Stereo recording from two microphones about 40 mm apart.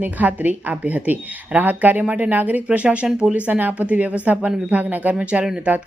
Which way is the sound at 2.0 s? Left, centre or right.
Right.